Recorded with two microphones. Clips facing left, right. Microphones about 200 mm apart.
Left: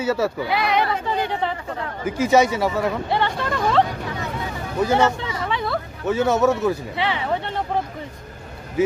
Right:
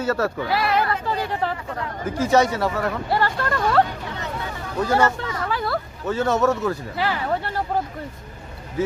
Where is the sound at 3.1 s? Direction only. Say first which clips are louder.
Even; centre (ahead or behind).